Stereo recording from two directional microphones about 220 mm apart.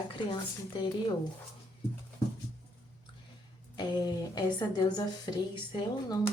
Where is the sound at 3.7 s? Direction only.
20° left (ahead or behind).